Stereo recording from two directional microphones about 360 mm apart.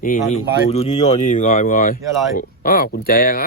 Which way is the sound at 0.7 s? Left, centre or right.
Centre.